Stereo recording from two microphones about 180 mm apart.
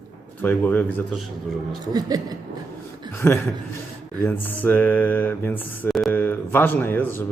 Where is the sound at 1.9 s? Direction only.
20° right (ahead or behind).